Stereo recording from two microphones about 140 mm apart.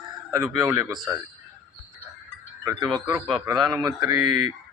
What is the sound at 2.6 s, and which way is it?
Speech, 25° right (ahead or behind).